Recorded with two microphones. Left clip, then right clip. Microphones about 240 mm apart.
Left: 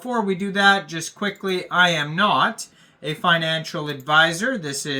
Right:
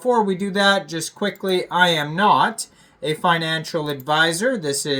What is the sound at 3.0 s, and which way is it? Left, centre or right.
Speech, centre.